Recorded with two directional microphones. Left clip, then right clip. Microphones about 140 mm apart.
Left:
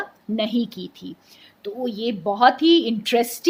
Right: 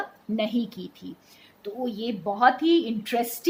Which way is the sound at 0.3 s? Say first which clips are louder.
Left 4 dB; 45° left (ahead or behind).